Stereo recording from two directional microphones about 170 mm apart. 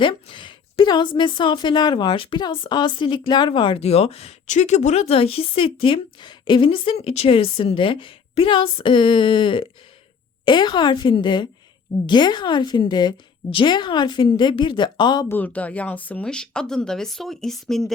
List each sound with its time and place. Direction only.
0.0 s a woman's voice: 30° left (ahead or behind)
15.3 s speech: 10° left (ahead or behind)